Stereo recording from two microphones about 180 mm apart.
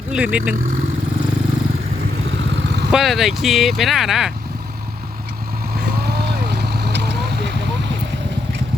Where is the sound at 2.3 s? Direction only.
90° right.